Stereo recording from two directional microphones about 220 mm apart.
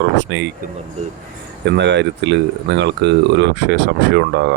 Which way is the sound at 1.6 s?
50° right (ahead or behind).